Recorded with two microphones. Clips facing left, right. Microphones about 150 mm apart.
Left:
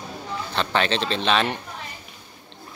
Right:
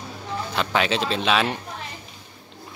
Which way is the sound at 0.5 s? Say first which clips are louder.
Even; 5° right (ahead or behind).